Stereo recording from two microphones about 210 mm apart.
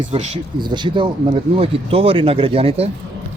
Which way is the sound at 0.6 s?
20° right (ahead or behind).